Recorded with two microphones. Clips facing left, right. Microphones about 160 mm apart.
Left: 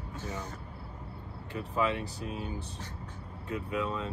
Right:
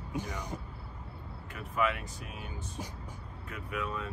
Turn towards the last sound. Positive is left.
turn(degrees=25)  # may be behind; listen again after turning